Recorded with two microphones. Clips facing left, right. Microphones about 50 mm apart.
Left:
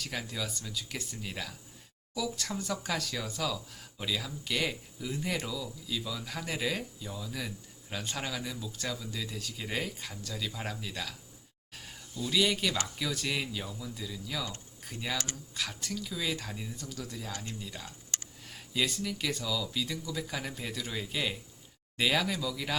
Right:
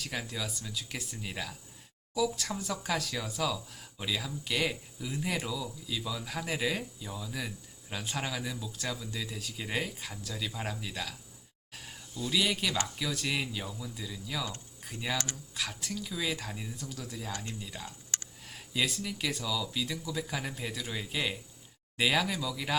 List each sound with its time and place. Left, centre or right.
0.0 s speech: centre
11.7 s a sound: centre
13.0 s speech: centre